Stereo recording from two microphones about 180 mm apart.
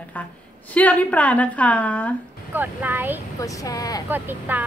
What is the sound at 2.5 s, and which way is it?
Speech, 10° right (ahead or behind).